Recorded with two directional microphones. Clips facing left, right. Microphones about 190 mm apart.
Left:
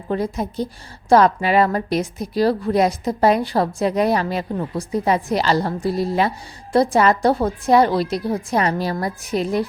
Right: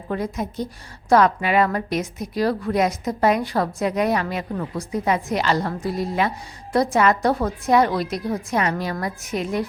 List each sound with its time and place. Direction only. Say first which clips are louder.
0.1 s a woman's voice: left 3 dB; 30° left (ahead or behind)